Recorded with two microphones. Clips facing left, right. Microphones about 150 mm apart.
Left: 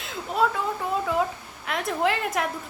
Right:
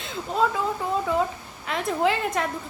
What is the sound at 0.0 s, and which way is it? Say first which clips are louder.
A woman's voice: even; centre (ahead or behind).